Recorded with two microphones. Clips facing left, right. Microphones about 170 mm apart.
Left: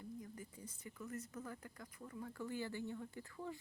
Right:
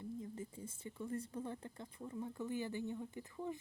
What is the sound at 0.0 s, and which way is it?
Speech, 25° right (ahead or behind).